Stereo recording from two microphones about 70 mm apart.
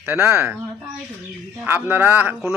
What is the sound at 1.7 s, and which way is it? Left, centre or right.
Speech, right.